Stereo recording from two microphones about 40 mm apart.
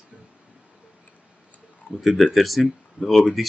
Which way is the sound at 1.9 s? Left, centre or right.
Centre.